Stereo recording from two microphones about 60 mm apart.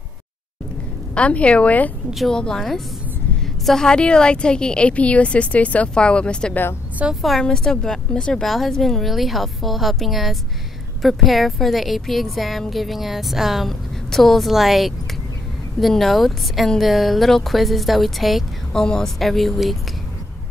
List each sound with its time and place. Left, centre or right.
1.1 s a woman's voice: centre
2.3 s a woman's voice: centre
7.2 s a woman's voice: centre
7.4 s a woman's voice: centre
18.7 s a woman's voice: centre